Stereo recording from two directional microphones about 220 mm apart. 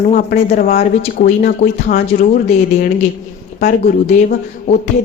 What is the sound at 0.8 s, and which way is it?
A woman's voice, 45° left (ahead or behind).